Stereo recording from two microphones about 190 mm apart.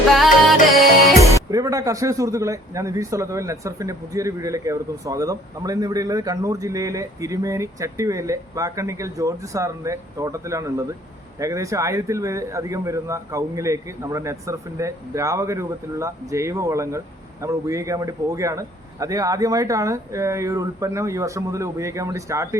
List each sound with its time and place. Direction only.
0.2 s music: centre (ahead or behind)
1.5 s a man's voice: 20° right (ahead or behind)